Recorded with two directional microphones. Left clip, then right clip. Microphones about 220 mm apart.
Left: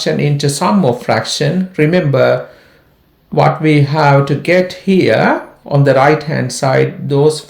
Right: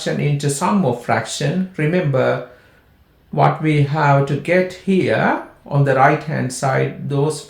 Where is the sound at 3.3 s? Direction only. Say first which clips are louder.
Left 5 dB; 40° left (ahead or behind).